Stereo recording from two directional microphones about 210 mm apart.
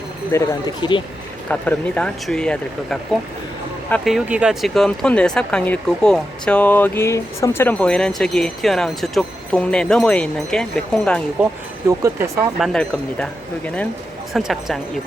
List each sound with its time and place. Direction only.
0.3 s speech: 20° left (ahead or behind)
1.5 s speech: 5° left (ahead or behind)
11.9 s speech: 15° right (ahead or behind)
12.5 s speech: centre (ahead or behind)
14.3 s speech: centre (ahead or behind)